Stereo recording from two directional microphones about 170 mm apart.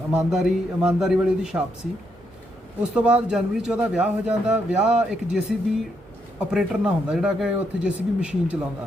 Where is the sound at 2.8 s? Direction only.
5° right (ahead or behind).